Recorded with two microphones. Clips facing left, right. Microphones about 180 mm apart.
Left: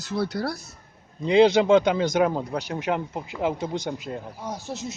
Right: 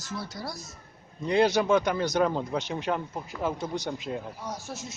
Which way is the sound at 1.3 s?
20° left (ahead or behind).